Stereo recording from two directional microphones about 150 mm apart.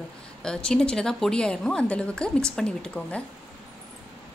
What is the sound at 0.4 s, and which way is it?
A woman's voice, 5° left (ahead or behind).